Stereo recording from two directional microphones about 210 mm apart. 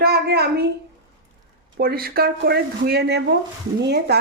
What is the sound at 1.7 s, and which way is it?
Speech, 45° right (ahead or behind).